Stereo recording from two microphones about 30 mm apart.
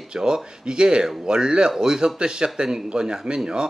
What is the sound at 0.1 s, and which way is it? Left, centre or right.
Speech, right.